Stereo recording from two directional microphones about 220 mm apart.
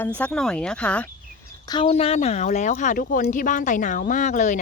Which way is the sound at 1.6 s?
20° left (ahead or behind).